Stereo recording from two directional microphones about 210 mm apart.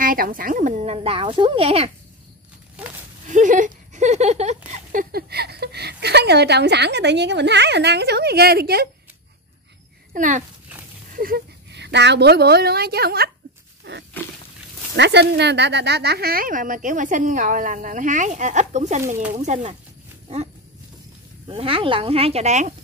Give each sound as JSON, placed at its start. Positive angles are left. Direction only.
{"t": 0.0, "sound": "speech", "side_deg": -40}
{"t": 3.3, "sound": "a sound", "side_deg": -35}
{"t": 5.1, "sound": "a woman's voice", "side_deg": -50}
{"t": 10.1, "sound": "a woman's voice", "side_deg": -35}
{"t": 13.9, "sound": "a sound", "side_deg": -50}
{"t": 15.0, "sound": "speech", "side_deg": -55}
{"t": 21.5, "sound": "speech", "side_deg": -25}